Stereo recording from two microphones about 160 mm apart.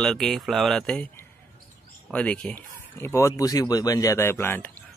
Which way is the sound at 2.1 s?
10° left (ahead or behind).